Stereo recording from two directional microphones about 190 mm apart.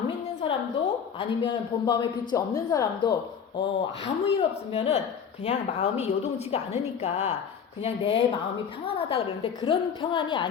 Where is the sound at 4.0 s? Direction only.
30° left (ahead or behind).